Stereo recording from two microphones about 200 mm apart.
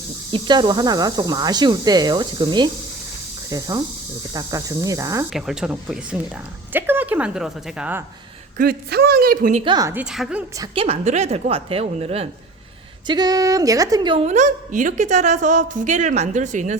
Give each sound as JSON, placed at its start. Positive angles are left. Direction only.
{"t": 0.3, "sound": "a woman's voice", "side_deg": -25}
{"t": 5.3, "sound": "a woman's voice", "side_deg": -5}
{"t": 8.5, "sound": "a woman's voice", "side_deg": -50}
{"t": 9.6, "sound": "speech", "side_deg": -20}
{"t": 10.0, "sound": "speech", "side_deg": -5}
{"t": 10.6, "sound": "a woman's voice", "side_deg": -30}
{"t": 13.1, "sound": "a woman's voice", "side_deg": -20}